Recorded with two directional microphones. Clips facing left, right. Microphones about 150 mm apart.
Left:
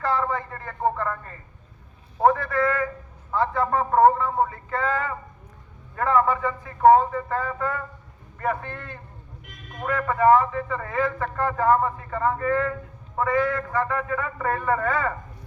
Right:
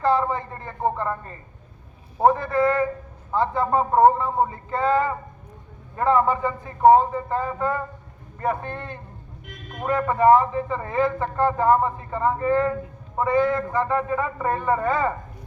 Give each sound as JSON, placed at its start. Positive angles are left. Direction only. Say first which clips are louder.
{"t": 0.0, "sound": "a man's voice", "louder": "right 4 dB", "side_deg": -20}